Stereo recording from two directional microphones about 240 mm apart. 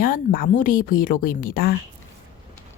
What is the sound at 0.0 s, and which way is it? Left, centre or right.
A woman's voice, left.